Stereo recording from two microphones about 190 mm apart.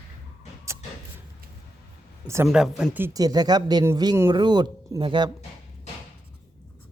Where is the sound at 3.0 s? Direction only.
20° right (ahead or behind).